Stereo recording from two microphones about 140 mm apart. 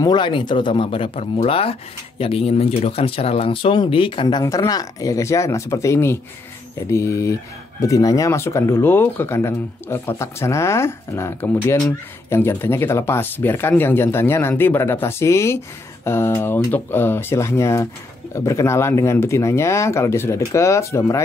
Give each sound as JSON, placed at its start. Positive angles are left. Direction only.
{"t": 0.0, "sound": "speech", "side_deg": 35}